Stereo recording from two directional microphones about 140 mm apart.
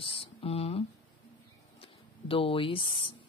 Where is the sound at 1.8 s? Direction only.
40° left (ahead or behind).